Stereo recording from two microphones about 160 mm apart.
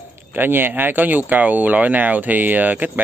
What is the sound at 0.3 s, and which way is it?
Speech, 10° right (ahead or behind).